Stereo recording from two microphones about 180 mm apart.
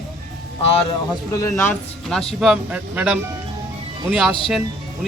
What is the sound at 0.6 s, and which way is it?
Speech, 35° left (ahead or behind).